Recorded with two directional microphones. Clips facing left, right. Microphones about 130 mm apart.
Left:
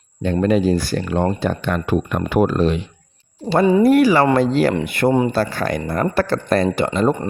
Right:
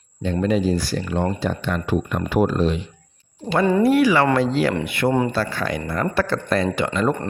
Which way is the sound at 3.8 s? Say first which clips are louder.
Left 2 dB; 45° left (ahead or behind).